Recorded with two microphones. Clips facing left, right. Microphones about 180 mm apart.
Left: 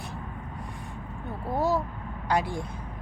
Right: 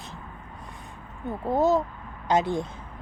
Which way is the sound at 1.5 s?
20° right (ahead or behind).